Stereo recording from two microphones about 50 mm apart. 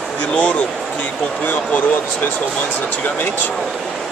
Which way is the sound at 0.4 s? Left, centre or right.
Left.